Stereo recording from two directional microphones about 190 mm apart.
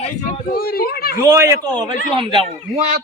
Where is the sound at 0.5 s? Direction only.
50° left (ahead or behind).